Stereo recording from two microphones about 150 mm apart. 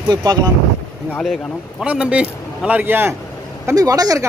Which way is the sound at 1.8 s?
10° right (ahead or behind).